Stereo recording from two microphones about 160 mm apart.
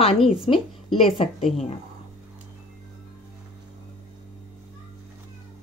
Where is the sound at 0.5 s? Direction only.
35° left (ahead or behind).